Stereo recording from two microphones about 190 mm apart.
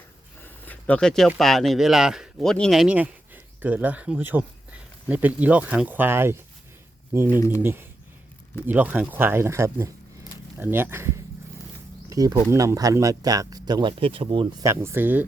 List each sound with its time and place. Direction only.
0.4 s a sound: 10° left (ahead or behind)
1.4 s speech: centre (ahead or behind)
7.3 s speech: 15° left (ahead or behind)
7.6 s speech: 10° right (ahead or behind)
14.7 s speech: 15° right (ahead or behind)